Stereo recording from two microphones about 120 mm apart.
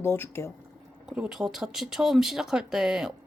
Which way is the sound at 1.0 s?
5° right (ahead or behind).